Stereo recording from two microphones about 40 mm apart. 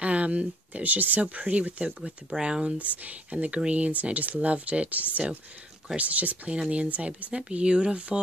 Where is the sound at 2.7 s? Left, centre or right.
Right.